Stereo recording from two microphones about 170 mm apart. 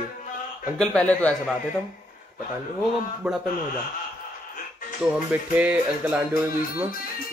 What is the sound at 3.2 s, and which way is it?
Speech, 5° right (ahead or behind).